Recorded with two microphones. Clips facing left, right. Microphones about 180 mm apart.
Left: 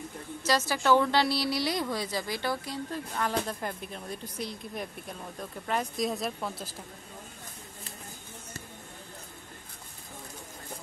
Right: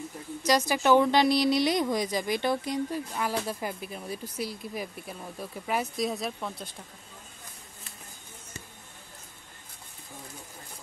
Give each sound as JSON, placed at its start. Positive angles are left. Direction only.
{"t": 0.4, "sound": "a woman's voice", "side_deg": -15}